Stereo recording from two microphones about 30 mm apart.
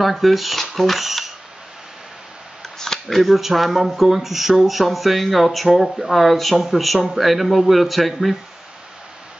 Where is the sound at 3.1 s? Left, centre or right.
Centre.